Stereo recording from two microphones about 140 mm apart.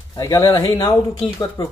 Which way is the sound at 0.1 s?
25° left (ahead or behind).